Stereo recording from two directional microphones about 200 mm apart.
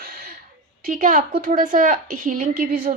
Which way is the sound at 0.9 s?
40° right (ahead or behind).